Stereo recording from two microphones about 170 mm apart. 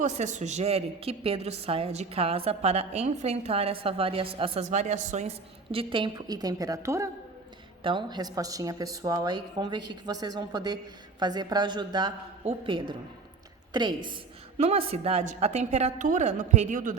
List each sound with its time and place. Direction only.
0.0 s a woman's voice: 45° right (ahead or behind)
5.7 s a woman's voice: 30° right (ahead or behind); by 17.0 s 50° right (ahead or behind)